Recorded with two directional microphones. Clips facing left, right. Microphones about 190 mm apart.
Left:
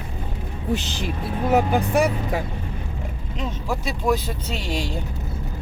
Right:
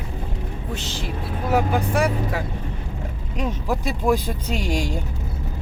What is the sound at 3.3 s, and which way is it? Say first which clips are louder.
Speech: right 3 dB; 10° right (ahead or behind).